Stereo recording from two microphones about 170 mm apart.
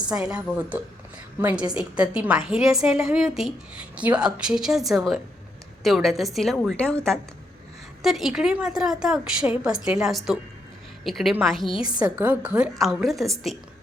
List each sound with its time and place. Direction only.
0.0 s a woman's voice: 5° right (ahead or behind)
11.9 s a woman's voice: 25° right (ahead or behind)
12.1 s a woman's voice: 10° right (ahead or behind)